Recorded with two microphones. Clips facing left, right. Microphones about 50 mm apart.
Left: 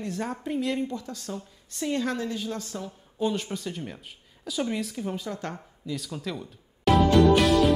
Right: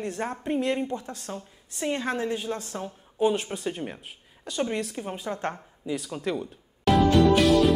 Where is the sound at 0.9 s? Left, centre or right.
Right.